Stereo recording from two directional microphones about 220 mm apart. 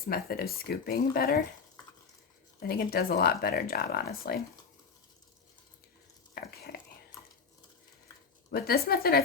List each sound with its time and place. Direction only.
0.1 s speech: 45° left (ahead or behind)
2.6 s speech: 45° left (ahead or behind)
8.4 s speech: 45° left (ahead or behind)